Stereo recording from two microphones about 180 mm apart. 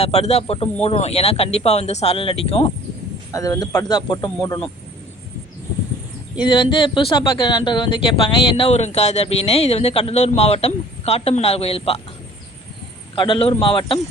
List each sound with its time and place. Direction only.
0.0 s speech: 35° left (ahead or behind)
3.3 s a man's voice: 20° left (ahead or behind)
6.4 s speech: 25° left (ahead or behind)
13.1 s speech: 25° left (ahead or behind)